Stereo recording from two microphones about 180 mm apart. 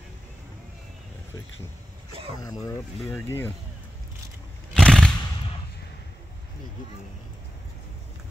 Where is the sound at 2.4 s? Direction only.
20° left (ahead or behind).